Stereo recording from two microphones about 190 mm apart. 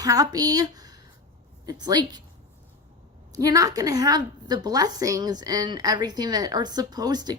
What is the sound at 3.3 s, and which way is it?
A woman's voice, 20° right (ahead or behind).